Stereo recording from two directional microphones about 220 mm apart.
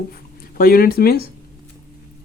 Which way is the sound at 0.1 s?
40° left (ahead or behind).